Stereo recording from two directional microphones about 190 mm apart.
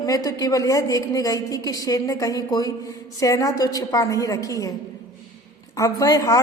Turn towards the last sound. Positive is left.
turn(degrees=15)  # may be behind; listen again after turning